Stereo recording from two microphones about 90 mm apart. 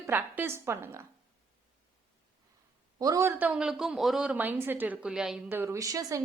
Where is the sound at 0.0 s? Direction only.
20° right (ahead or behind).